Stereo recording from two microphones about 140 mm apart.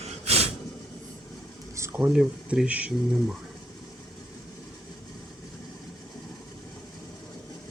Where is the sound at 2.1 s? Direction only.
5° right (ahead or behind).